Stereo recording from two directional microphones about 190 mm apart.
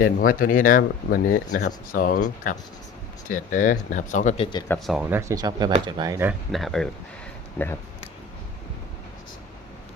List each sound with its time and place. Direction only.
0.0 s speech: 50° left (ahead or behind)
4.9 s speech: 10° right (ahead or behind)
6.5 s speech: centre (ahead or behind)